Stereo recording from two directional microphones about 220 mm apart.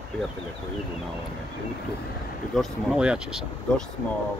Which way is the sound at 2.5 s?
Centre (ahead or behind).